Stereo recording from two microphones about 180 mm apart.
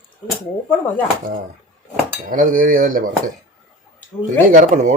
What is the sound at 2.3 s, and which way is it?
Speech, 50° right (ahead or behind).